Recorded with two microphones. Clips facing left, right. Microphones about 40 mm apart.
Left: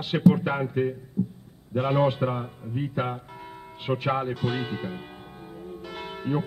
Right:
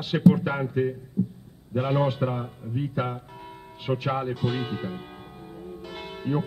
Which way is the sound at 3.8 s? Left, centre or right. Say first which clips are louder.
Left 1 dB; centre.